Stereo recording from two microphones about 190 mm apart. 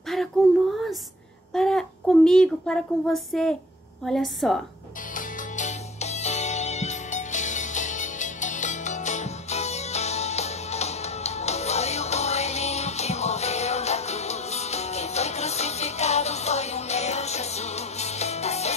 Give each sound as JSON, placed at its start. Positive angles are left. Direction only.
{"t": 0.4, "sound": "a sound", "side_deg": 0}
{"t": 4.0, "sound": "a woman's voice", "side_deg": 0}
{"t": 5.1, "sound": "music", "side_deg": 40}